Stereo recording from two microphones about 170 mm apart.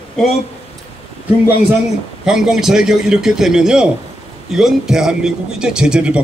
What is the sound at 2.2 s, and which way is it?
A man's voice, 5° right (ahead or behind).